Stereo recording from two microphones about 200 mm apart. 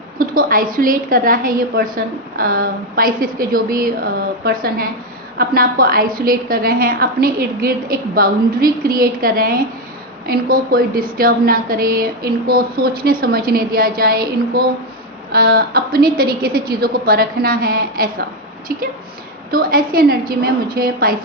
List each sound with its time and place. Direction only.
0.2 s a woman's voice: 45° right (ahead or behind)